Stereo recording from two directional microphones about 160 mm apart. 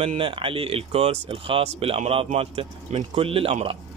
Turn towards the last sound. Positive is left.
turn(degrees=-35)  # may be behind; listen again after turning